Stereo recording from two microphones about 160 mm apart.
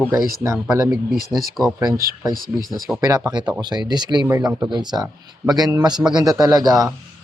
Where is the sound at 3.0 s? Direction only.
20° right (ahead or behind).